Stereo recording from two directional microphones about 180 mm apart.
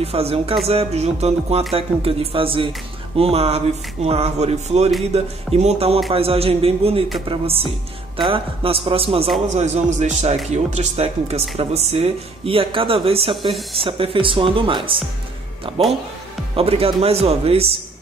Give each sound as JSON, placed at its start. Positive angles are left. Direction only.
{"t": 0.0, "sound": "speech", "side_deg": -35}
{"t": 16.5, "sound": "speech", "side_deg": -30}